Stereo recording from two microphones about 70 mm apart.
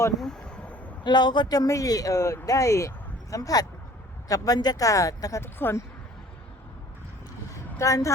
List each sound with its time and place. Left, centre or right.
0.2 s a sound: centre
1.0 s speech: left
5.4 s speech: left
7.8 s speech: left